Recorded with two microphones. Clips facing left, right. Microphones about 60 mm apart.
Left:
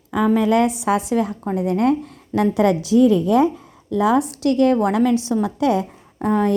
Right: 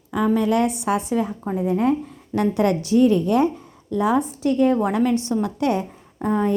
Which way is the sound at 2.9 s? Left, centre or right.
Left.